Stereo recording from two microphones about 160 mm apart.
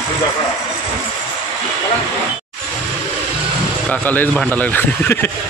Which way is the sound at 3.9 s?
10° left (ahead or behind).